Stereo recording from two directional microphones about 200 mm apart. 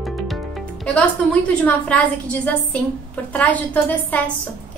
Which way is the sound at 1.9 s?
5° left (ahead or behind).